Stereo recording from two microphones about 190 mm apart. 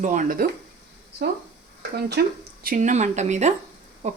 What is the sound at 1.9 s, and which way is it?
Speech, 55° right (ahead or behind).